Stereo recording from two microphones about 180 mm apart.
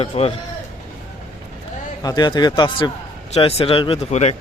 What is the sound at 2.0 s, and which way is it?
Speech, 25° left (ahead or behind).